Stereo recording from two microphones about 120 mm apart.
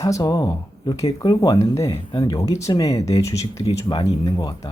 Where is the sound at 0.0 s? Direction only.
35° left (ahead or behind).